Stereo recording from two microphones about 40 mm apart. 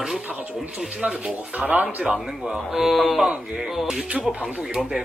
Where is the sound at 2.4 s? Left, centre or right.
Centre.